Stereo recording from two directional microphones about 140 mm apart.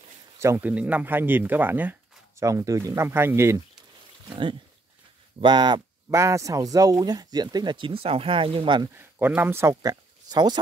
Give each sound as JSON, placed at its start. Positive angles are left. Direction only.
{"t": 0.4, "sound": "speech", "side_deg": -15}
{"t": 4.3, "sound": "speech", "side_deg": -35}
{"t": 6.0, "sound": "speech", "side_deg": -20}
{"t": 8.9, "sound": "speech", "side_deg": -15}